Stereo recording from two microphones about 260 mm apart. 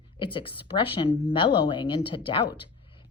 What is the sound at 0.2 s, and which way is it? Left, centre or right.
A woman's voice, centre.